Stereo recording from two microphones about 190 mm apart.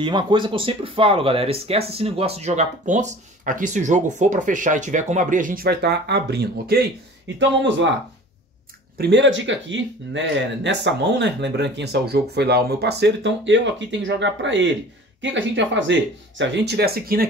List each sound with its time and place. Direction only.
0.0 s speech: 25° right (ahead or behind); by 6.9 s 55° right (ahead or behind)
7.3 s speech: 70° right (ahead or behind)
8.9 s speech: 70° right (ahead or behind); by 17.3 s 50° right (ahead or behind)